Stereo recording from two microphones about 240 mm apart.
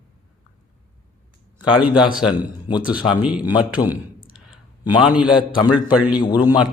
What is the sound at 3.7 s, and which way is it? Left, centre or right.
Speech, centre.